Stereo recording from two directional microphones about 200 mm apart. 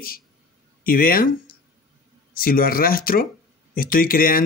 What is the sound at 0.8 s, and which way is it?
Speech, 45° left (ahead or behind).